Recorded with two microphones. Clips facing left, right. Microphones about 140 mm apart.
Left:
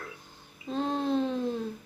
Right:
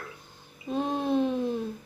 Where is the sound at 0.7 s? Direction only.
15° right (ahead or behind).